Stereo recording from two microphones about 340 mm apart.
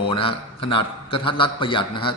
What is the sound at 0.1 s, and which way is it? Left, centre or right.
A man's voice, centre.